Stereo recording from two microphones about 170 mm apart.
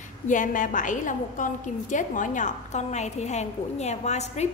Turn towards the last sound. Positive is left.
turn(degrees=40)  # may be behind; listen again after turning